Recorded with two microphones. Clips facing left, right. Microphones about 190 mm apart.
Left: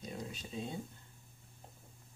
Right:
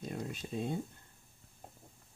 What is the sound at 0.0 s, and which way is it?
Speech, 55° right (ahead or behind).